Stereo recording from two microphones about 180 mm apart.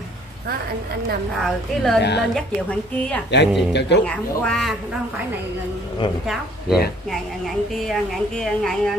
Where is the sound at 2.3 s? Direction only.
5° left (ahead or behind).